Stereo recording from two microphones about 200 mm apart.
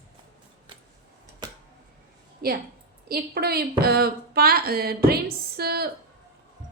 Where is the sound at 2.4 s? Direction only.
50° right (ahead or behind).